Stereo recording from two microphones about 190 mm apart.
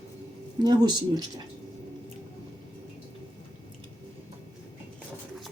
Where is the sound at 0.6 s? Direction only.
20° right (ahead or behind).